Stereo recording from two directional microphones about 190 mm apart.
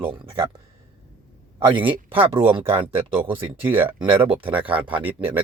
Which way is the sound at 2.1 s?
25° right (ahead or behind).